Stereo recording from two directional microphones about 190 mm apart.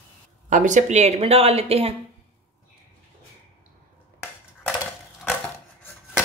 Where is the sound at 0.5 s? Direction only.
40° right (ahead or behind).